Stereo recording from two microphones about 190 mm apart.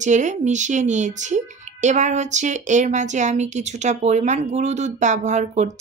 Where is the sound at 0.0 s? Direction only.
40° right (ahead or behind).